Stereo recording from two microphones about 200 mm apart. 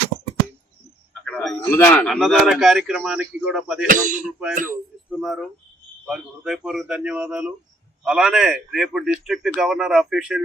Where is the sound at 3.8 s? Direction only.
40° right (ahead or behind).